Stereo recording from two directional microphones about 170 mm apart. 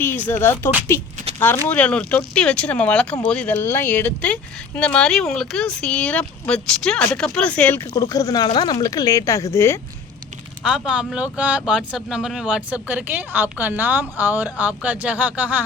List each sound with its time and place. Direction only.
0.0 s speech: 15° left (ahead or behind)
7.9 s speech: 20° left (ahead or behind)
10.6 s speech: 5° right (ahead or behind)